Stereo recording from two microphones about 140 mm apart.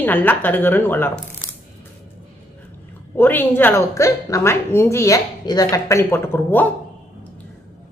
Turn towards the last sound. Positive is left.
turn(degrees=15)  # may be behind; listen again after turning